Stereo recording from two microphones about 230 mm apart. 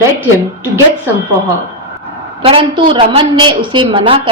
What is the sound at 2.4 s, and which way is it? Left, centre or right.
A woman's voice, right.